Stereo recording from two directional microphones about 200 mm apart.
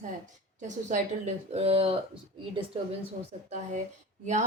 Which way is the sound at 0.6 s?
35° right (ahead or behind).